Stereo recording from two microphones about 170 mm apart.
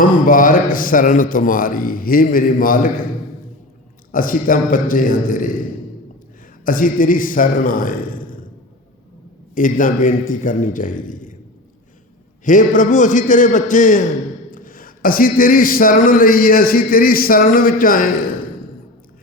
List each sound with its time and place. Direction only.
0.0 s a man's voice: 55° left (ahead or behind)
4.1 s a man's voice: 55° left (ahead or behind)
6.7 s a man's voice: 55° left (ahead or behind)
9.6 s a man's voice: 50° left (ahead or behind)
12.5 s a man's voice: 50° left (ahead or behind)